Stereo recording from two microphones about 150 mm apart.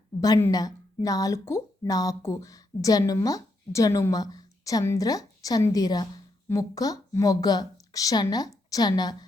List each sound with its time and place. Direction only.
0.2 s speech: 20° left (ahead or behind)